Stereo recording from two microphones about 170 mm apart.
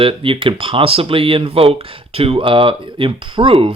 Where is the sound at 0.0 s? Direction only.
30° right (ahead or behind).